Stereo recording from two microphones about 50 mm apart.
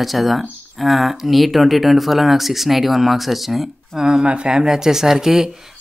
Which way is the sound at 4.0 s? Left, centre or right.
Centre.